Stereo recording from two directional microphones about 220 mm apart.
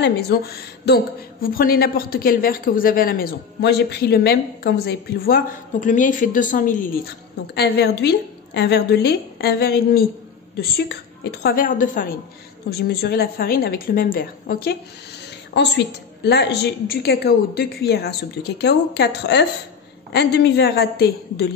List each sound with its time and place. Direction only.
0.0 s a woman's voice: 50° left (ahead or behind)
11.4 s a woman's voice: 40° left (ahead or behind)